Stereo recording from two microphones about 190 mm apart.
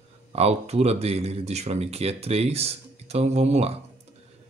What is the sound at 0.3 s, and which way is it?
Speech, 35° right (ahead or behind).